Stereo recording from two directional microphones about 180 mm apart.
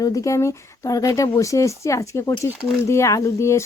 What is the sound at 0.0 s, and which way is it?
Speech, 20° left (ahead or behind).